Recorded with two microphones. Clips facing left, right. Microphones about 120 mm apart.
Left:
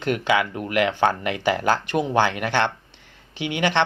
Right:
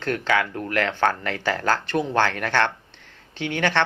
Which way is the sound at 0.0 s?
15° left (ahead or behind).